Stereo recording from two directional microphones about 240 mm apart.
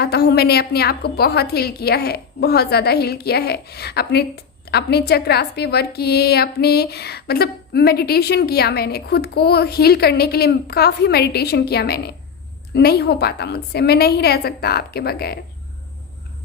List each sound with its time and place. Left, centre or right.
0.0 s a woman's voice: left